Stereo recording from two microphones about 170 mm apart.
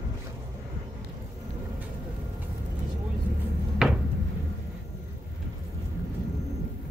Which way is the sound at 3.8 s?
5° right (ahead or behind).